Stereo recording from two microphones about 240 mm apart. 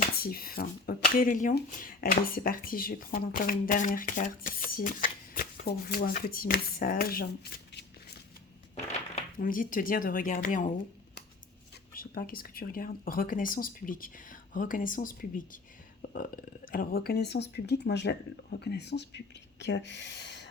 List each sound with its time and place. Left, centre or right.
0.2 s speech: left
9.4 s speech: left
11.9 s speech: left